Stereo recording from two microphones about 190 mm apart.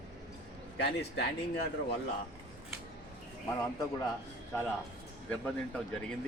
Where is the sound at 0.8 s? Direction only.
60° left (ahead or behind).